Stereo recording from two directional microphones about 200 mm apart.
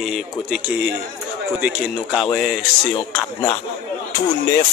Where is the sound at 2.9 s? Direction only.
25° left (ahead or behind).